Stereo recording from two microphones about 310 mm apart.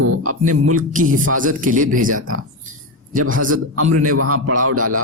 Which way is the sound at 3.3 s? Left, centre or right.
Right.